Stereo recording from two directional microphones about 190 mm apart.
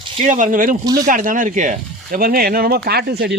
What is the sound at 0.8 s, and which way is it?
Speech, 20° right (ahead or behind).